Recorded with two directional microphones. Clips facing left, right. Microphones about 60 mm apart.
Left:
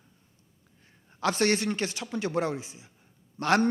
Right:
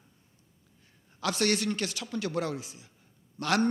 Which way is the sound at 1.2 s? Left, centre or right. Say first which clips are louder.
Left 3 dB; left.